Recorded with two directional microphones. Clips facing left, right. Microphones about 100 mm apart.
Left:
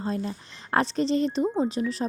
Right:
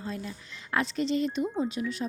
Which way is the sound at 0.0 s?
40° left (ahead or behind).